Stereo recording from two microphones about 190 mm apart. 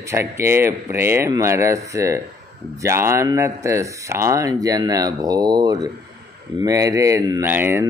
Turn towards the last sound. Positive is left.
turn(degrees=-10)  # may be behind; listen again after turning